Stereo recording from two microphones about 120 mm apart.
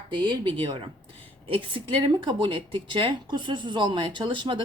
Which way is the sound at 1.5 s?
45° right (ahead or behind).